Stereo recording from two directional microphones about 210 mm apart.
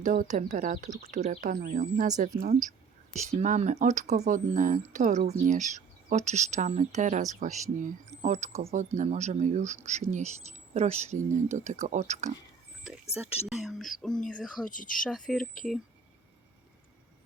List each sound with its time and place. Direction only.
0.0 s a woman's voice: 40° right (ahead or behind)
13.6 s speech: centre (ahead or behind)
14.7 s speech: 40° left (ahead or behind)
15.0 s speech: centre (ahead or behind)